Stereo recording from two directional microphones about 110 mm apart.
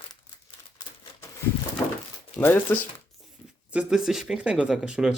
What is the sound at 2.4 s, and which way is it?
Speech, 15° left (ahead or behind).